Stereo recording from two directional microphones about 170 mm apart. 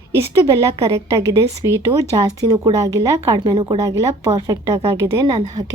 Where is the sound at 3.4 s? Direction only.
30° right (ahead or behind).